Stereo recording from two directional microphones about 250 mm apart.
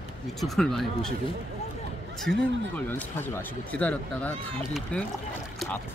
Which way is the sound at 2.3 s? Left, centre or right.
Right.